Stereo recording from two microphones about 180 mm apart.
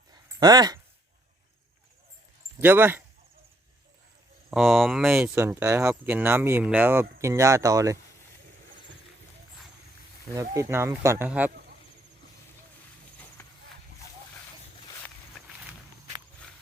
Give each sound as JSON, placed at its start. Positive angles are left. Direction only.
{"t": 0.1, "sound": "a sound", "side_deg": -20}
{"t": 2.6, "sound": "speech", "side_deg": -10}
{"t": 4.5, "sound": "speech", "side_deg": 0}
{"t": 5.3, "sound": "speech", "side_deg": -15}
{"t": 10.3, "sound": "speech", "side_deg": -15}
{"t": 13.4, "sound": "horse", "side_deg": 10}